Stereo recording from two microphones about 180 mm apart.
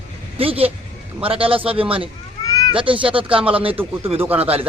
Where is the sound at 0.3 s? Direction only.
30° right (ahead or behind).